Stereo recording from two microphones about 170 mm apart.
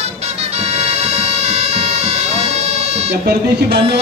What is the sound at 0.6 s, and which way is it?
Bagpipes, 40° right (ahead or behind).